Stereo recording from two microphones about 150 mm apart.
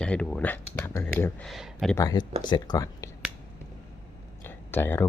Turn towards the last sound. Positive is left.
turn(degrees=15)  # may be behind; listen again after turning